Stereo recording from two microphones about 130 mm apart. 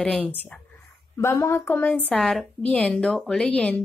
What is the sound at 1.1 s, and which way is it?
Speech, 20° left (ahead or behind).